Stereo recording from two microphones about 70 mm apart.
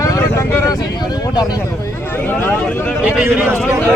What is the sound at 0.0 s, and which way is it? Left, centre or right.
Vehicle, left.